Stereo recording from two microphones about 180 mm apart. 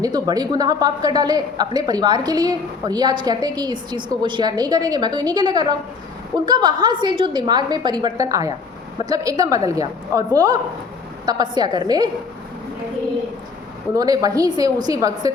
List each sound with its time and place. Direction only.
0.0 s a man's voice: 20° right (ahead or behind)
13.9 s a man's voice: 20° right (ahead or behind)